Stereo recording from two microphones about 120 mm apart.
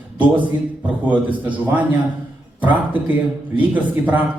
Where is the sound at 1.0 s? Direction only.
15° right (ahead or behind).